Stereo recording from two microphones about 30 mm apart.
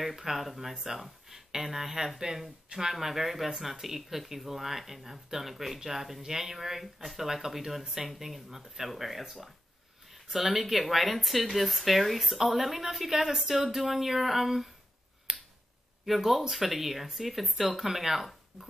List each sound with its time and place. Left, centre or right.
0.0 s speech: centre
15.3 s finger snapping: centre
16.2 s speech: centre